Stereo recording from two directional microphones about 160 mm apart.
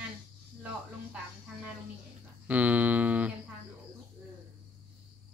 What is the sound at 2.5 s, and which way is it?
Speech, 10° right (ahead or behind).